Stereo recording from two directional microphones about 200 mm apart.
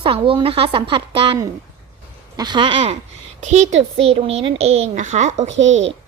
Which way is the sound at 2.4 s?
20° right (ahead or behind).